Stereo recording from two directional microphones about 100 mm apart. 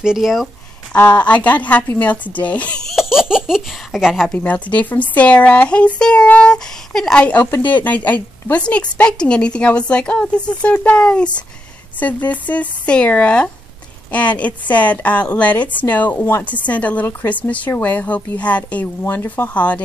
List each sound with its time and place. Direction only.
0.0 s speech: 5° right (ahead or behind)
0.9 s a woman's voice: 15° left (ahead or behind)
2.9 s a sound: 5° right (ahead or behind)
4.3 s a woman's voice: 15° left (ahead or behind)